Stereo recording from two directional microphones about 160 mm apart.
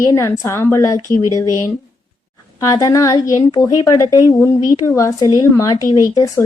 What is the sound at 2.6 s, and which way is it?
A woman's voice, 20° left (ahead or behind).